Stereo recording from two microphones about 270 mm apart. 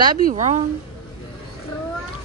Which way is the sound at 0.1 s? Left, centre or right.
Right.